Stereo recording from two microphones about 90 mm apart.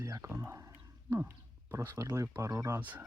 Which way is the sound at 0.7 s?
20° right (ahead or behind).